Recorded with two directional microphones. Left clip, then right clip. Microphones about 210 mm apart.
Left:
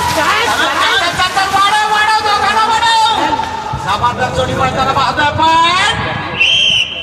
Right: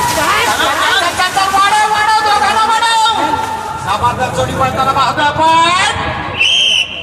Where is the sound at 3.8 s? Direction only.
15° right (ahead or behind).